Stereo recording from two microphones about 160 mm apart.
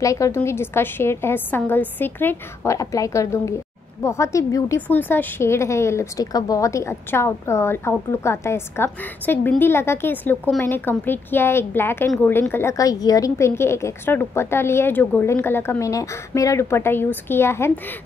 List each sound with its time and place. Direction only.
0.0 s a woman's voice: 20° left (ahead or behind)